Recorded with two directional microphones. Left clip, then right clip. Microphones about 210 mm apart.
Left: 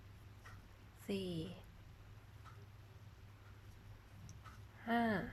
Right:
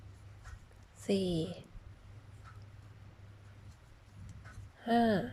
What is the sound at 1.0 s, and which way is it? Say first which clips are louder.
Speech: right 10 dB; 15° right (ahead or behind).